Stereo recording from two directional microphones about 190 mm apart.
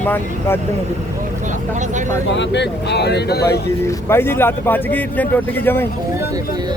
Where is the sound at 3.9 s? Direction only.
15° left (ahead or behind).